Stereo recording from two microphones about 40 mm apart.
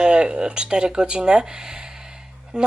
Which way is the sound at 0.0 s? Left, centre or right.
Right.